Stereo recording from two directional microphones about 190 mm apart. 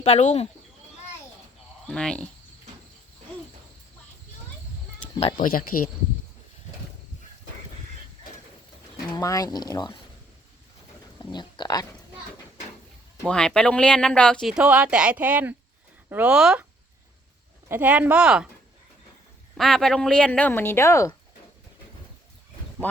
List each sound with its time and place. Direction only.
0.0 s speech: 35° left (ahead or behind)
1.9 s speech: 5° left (ahead or behind)
5.4 s speech: 50° left (ahead or behind)
9.1 s speech: 20° left (ahead or behind)
11.2 s speech: 25° left (ahead or behind)
13.2 s speech: 5° left (ahead or behind)
17.7 s speech: 10° right (ahead or behind)
19.5 s speech: centre (ahead or behind)